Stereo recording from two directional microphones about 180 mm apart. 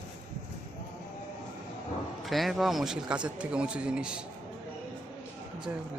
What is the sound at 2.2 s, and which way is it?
Speech, centre (ahead or behind).